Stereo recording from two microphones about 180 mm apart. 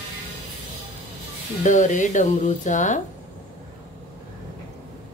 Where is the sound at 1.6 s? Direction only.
45° left (ahead or behind).